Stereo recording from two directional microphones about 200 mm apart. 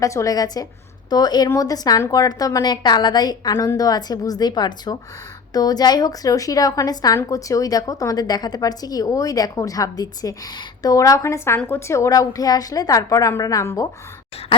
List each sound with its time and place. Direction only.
0.0 s a woman's voice: 15° left (ahead or behind)